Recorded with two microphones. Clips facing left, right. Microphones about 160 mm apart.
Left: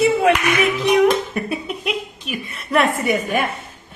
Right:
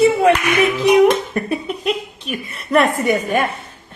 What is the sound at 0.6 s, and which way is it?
Speech, 35° right (ahead or behind).